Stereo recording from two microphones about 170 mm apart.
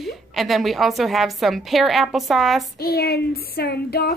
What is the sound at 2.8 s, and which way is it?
Child singing, 65° left (ahead or behind).